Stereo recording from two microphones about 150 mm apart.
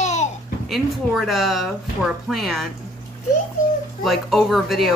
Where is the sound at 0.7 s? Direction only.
Centre (ahead or behind).